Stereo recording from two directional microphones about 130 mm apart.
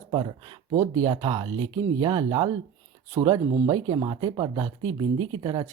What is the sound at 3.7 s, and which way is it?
Speech, 35° right (ahead or behind).